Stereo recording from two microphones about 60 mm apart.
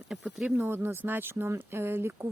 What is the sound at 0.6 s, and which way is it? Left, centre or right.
Speech, right.